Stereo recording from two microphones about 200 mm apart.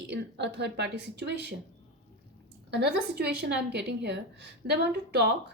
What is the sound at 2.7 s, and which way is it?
A woman's voice, 55° right (ahead or behind).